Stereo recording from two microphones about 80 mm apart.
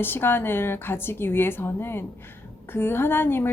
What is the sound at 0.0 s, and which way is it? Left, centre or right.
Speech, left.